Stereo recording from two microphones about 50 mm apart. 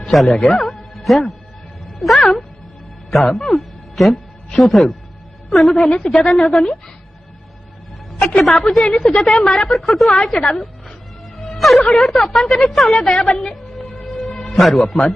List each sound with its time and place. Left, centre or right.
0.0 s a man's voice: centre
0.6 s music: centre
2.0 s a man's voice: centre
8.4 s a woman's voice: centre
11.9 s a woman's voice: centre
12.1 s a man's voice: centre
13.3 s music: centre
14.3 s music: centre
14.5 s a man's voice: centre